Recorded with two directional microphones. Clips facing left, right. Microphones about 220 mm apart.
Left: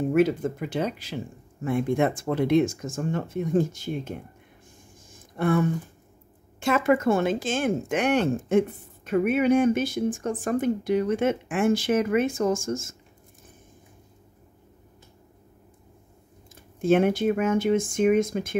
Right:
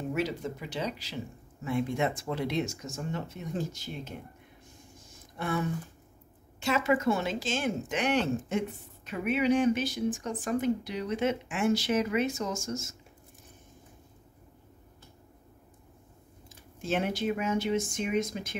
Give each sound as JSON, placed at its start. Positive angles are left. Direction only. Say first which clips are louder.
{"t": 0.1, "sound": "speech", "louder": "left 10 dB", "side_deg": 50}
{"t": 5.1, "sound": "a sound", "louder": "left 9 dB", "side_deg": 50}
{"t": 6.6, "sound": "speech", "louder": "left 5 dB", "side_deg": 50}
{"t": 16.8, "sound": "speech", "louder": "left 9 dB", "side_deg": 50}